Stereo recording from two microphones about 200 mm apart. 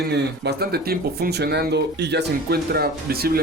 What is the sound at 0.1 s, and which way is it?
Speech, 55° right (ahead or behind).